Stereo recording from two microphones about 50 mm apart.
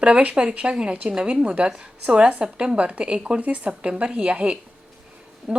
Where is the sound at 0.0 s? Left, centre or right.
Right.